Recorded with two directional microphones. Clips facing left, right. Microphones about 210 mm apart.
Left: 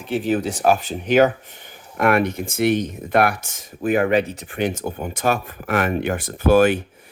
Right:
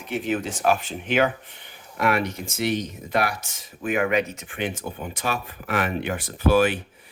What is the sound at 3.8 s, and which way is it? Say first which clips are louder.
Speech: left 5 dB; 35° left (ahead or behind).